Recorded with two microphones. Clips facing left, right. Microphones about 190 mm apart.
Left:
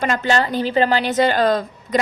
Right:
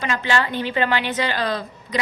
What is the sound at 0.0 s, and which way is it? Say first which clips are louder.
A woman's voice: left 4 dB; 45° left (ahead or behind).